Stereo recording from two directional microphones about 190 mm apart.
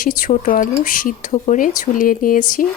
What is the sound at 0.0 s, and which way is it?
Speech, 45° left (ahead or behind).